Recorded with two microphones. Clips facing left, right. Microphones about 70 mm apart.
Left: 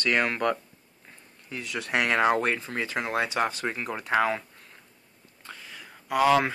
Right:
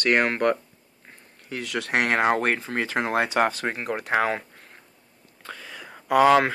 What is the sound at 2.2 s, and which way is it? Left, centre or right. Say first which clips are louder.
Speech: left 1 dB; right.